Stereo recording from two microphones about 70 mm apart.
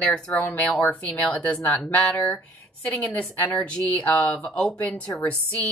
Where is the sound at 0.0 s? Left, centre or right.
Centre.